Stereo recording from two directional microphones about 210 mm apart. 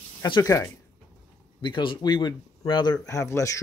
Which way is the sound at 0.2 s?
15° left (ahead or behind).